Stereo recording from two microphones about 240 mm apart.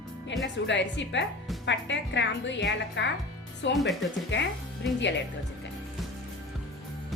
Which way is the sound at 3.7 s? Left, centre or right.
Centre.